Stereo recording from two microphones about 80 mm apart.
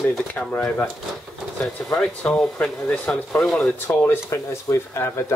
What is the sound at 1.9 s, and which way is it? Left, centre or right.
Speech, centre.